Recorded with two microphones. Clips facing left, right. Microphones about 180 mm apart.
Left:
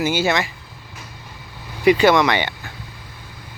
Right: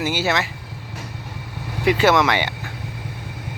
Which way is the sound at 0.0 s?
Centre (ahead or behind).